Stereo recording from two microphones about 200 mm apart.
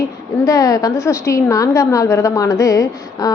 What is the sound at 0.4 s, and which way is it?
A woman's voice, 15° left (ahead or behind).